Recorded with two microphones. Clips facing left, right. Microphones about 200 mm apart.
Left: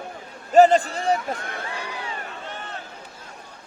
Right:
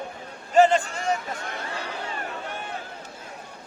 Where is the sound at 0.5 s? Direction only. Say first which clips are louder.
Left 4 dB; 35° left (ahead or behind).